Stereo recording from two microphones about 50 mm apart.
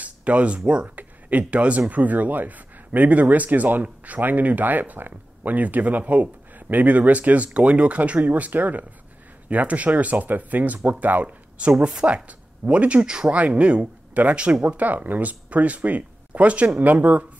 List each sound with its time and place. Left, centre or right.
0.0 s a sound: right
0.8 s speech: right
11.2 s speech: right